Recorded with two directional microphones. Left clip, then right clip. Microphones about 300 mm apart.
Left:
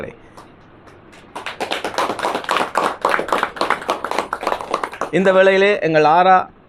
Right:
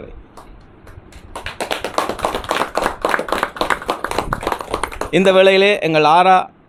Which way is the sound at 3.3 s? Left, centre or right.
Right.